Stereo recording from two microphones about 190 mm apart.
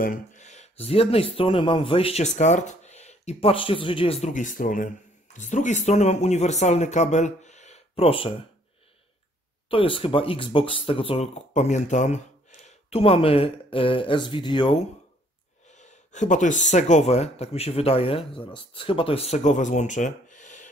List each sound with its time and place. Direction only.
0.0 s speech: 45° left (ahead or behind)
9.7 s speech: 30° left (ahead or behind)
15.7 s speech: 40° left (ahead or behind)